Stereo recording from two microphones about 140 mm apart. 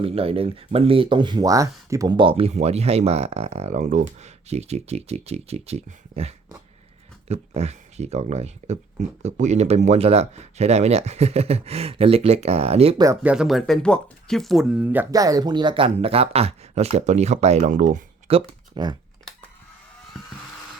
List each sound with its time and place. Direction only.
0.0 s speech: 45° right (ahead or behind); by 2.1 s 25° right (ahead or behind)
2.1 s speech: 40° right (ahead or behind)
13.2 s speech: 5° right (ahead or behind)
15.1 s speech: 25° right (ahead or behind); by 18.0 s 60° right (ahead or behind)
18.3 s a sound: 45° right (ahead or behind)